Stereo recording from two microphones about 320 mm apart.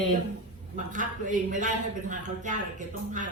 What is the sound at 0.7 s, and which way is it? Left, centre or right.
A man's voice, right.